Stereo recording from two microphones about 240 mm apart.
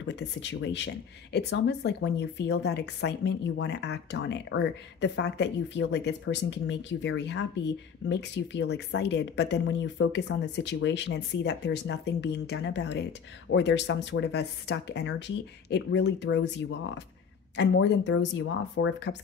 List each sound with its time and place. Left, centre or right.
0.1 s speech: left